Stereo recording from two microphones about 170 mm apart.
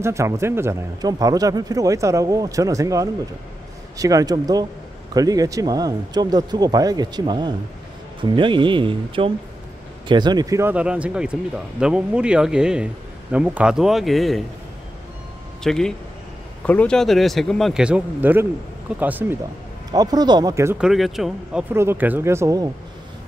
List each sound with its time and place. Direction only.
0.0 s speech: 15° right (ahead or behind); by 14.4 s centre (ahead or behind)
15.6 s speech: 5° left (ahead or behind)
19.9 s speech: 25° right (ahead or behind)
20.7 s speech: 5° right (ahead or behind)
21.7 s speech: 10° right (ahead or behind)